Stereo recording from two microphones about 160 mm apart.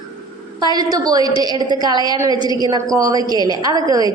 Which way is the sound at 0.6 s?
25° right (ahead or behind).